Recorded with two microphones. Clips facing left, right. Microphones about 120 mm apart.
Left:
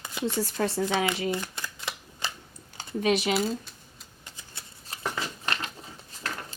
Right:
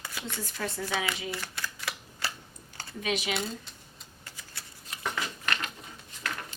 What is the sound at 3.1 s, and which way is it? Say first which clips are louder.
Speech: left 5 dB; 30° left (ahead or behind).